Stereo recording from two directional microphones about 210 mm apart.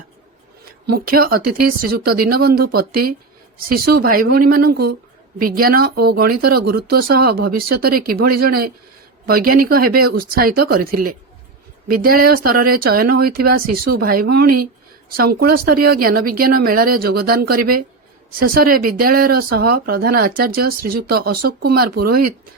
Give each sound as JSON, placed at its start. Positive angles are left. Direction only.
{"t": 0.9, "sound": "speech", "side_deg": -45}